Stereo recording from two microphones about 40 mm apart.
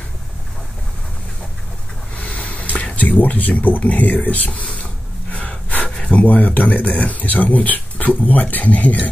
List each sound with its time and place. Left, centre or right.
2.1 s speech: left
5.3 s gasp: left
6.1 s speech: left